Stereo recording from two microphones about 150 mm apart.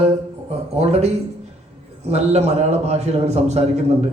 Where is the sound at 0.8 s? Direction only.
45° right (ahead or behind).